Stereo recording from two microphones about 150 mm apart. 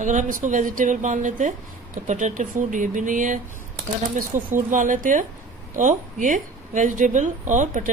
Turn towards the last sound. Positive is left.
turn(degrees=-60)  # may be behind; listen again after turning